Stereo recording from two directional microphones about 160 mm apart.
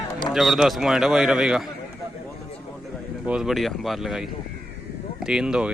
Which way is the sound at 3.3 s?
5° right (ahead or behind).